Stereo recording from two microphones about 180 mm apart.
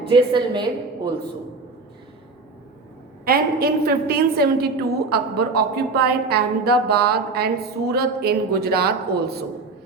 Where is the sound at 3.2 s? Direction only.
55° right (ahead or behind).